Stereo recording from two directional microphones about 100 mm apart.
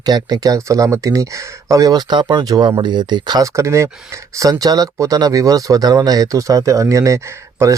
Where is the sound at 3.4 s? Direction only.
30° right (ahead or behind).